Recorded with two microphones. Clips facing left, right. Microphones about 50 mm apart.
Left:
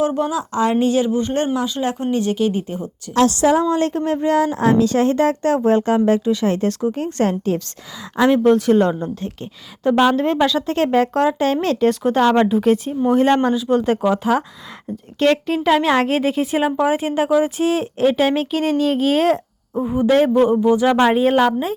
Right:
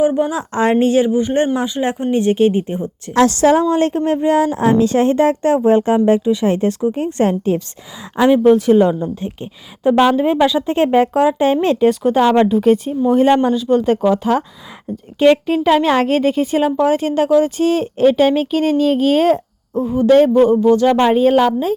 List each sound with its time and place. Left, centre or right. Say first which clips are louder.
0.0 s a woman's voice: right 4 dB; centre
0.3 s a woman's voice: right 3 dB; right
1.1 s speech: right 4 dB; centre
3.3 s a woman's voice: right 5 dB; right
3.6 s a woman's voice: right 3 dB; right
8.3 s speech: right 4 dB; centre
9.2 s speech: right 3 dB; centre
11.9 s speech: right 1 dB; centre
15.2 s speech: right 4 dB; centre
19.8 s a man's voice: right 2 dB; left
20.1 s speech: right 4 dB; centre